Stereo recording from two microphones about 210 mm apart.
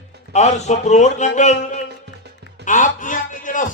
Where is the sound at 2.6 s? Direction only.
35° left (ahead or behind).